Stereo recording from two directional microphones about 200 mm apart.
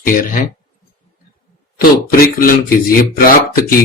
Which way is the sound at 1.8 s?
45° left (ahead or behind).